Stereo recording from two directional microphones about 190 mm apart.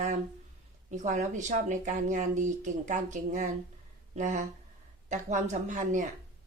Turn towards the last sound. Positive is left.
turn(degrees=-40)  # may be behind; listen again after turning